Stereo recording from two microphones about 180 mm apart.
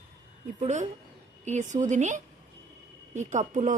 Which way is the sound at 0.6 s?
40° right (ahead or behind).